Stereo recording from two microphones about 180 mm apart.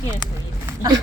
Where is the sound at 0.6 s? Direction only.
20° right (ahead or behind).